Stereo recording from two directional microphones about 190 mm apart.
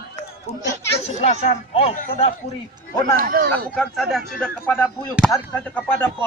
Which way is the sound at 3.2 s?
50° right (ahead or behind).